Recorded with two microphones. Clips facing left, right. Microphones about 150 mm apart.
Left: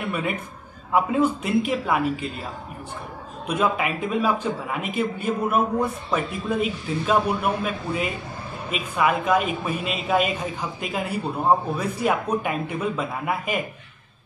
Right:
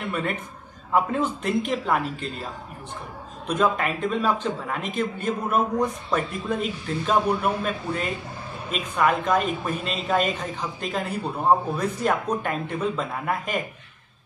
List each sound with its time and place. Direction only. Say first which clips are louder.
0.1 s a man's voice: left 1 dB; 5° left (ahead or behind)
3.4 s a man's voice: even; 10° left (ahead or behind)